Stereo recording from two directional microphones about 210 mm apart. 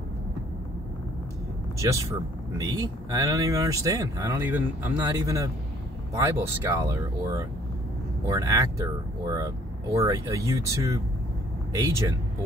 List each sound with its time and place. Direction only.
1.8 s speech: 15° right (ahead or behind)
9.9 s speech: 15° right (ahead or behind)